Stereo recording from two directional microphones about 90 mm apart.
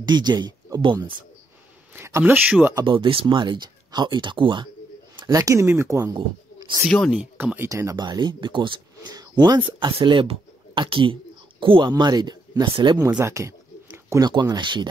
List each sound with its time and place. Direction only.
0.0 s speech: 55° right (ahead or behind)
2.0 s speech: 25° right (ahead or behind)
2.8 s speech: 60° right (ahead or behind)
5.3 s speech: 40° right (ahead or behind)
6.8 s speech: centre (ahead or behind)
7.2 s speech: 20° right (ahead or behind)
7.7 s speech: 40° right (ahead or behind)
8.0 s speech: 55° right (ahead or behind)
9.1 s a sound: 50° right (ahead or behind)
9.8 s speech: 60° right (ahead or behind)
11.9 s speech: 50° right (ahead or behind)
13.2 s a sound: 35° right (ahead or behind)
14.2 s speech: 50° right (ahead or behind)